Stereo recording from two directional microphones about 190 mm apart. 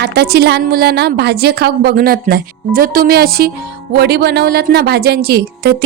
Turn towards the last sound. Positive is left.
turn(degrees=-55)  # may be behind; listen again after turning